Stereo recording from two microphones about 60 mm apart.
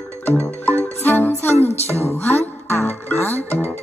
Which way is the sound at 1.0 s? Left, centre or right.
Left.